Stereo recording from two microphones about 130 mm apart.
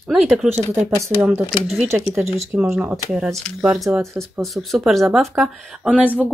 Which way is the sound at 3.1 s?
Centre (ahead or behind).